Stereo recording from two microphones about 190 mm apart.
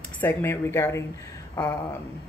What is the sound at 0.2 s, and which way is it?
Speech, 10° left (ahead or behind).